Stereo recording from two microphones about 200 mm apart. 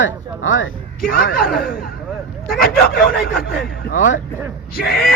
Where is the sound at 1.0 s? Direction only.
50° left (ahead or behind).